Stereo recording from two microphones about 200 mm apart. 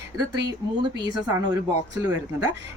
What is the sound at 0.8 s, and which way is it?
Speech, 20° right (ahead or behind).